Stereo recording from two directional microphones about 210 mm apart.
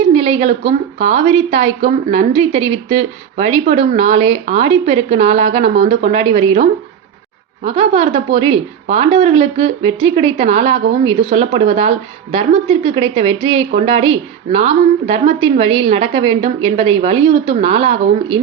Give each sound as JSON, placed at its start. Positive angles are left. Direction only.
{"t": 0.1, "sound": "a woman's voice", "side_deg": -30}